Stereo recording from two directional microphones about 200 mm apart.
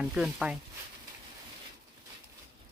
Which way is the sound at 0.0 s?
5° right (ahead or behind).